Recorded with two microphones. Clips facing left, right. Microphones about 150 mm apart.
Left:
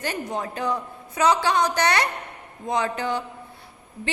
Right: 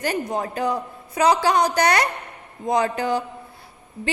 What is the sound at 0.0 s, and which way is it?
A woman's voice, 40° right (ahead or behind).